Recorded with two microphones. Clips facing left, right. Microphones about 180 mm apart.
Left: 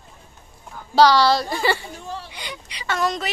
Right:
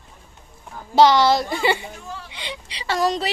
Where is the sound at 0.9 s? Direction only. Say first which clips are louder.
Right 1 dB; 20° right (ahead or behind).